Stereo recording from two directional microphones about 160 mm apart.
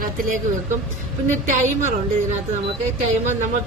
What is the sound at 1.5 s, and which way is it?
Speech, 50° right (ahead or behind).